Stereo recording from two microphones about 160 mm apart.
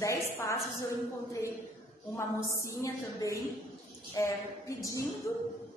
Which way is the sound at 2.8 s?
20° left (ahead or behind).